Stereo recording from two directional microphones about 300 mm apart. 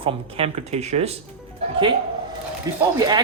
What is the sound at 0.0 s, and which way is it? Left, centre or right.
Speech, centre.